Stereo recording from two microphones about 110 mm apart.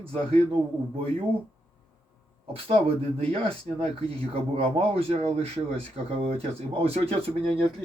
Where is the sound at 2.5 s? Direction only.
55° right (ahead or behind).